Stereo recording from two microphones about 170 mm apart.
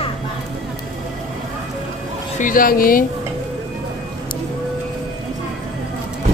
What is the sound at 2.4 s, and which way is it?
Speech, 55° left (ahead or behind).